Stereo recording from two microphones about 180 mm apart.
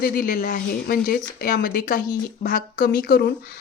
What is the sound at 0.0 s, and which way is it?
Speech, 55° left (ahead or behind).